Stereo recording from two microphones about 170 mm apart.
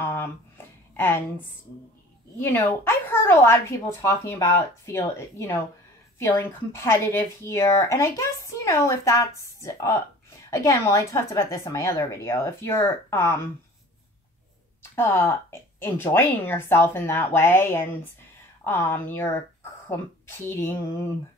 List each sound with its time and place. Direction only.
0.0 s a sound: 15° left (ahead or behind)
2.4 s a woman's voice: 10° left (ahead or behind)
15.0 s a woman's voice: 15° left (ahead or behind)